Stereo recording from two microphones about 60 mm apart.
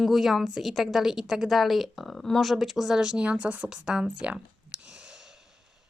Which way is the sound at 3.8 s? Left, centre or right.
Centre.